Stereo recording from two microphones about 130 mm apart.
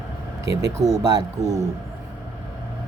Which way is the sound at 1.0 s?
30° right (ahead or behind).